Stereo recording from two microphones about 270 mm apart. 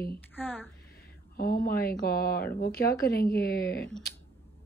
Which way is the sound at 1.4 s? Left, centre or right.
Left.